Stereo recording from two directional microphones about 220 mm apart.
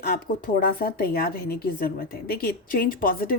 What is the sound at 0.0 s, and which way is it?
A woman's voice, 40° left (ahead or behind).